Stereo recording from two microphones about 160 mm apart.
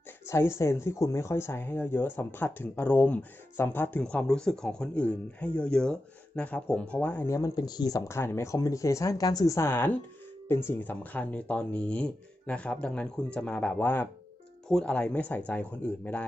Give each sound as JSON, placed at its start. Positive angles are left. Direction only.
{"t": 0.3, "sound": "speech", "side_deg": 15}